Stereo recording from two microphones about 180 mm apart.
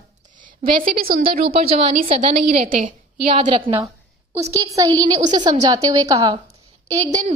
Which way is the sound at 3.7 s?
15° right (ahead or behind).